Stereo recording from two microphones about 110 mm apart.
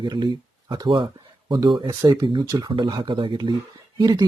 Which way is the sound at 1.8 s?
35° right (ahead or behind).